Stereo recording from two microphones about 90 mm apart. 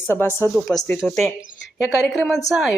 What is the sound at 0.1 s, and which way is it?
Speech, 25° left (ahead or behind).